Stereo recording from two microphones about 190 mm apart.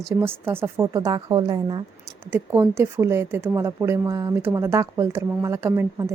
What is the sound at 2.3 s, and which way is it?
Speech, 10° right (ahead or behind).